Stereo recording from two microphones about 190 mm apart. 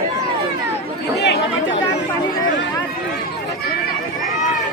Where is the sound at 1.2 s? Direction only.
65° left (ahead or behind).